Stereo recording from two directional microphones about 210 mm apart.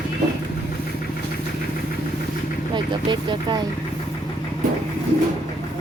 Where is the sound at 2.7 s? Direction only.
20° right (ahead or behind).